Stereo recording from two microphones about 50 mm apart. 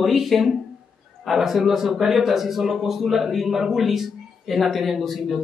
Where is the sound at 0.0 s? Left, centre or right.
Centre.